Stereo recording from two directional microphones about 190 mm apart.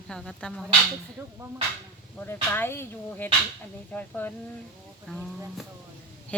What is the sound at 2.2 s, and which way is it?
Speech, 10° left (ahead or behind).